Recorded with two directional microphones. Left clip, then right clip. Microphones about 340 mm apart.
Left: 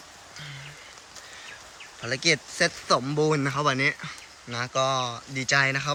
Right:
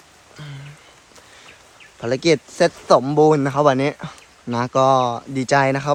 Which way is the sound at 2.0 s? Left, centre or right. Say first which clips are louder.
Right 7 dB; centre.